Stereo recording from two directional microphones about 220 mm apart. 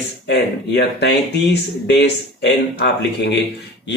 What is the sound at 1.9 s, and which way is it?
Speech, 50° left (ahead or behind).